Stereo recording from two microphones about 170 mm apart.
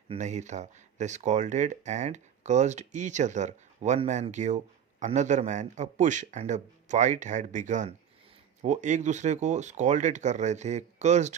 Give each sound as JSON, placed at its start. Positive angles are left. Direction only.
{"t": 0.1, "sound": "speech", "side_deg": -45}